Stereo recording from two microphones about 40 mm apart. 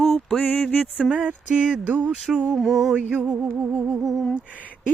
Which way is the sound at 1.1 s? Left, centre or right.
Right.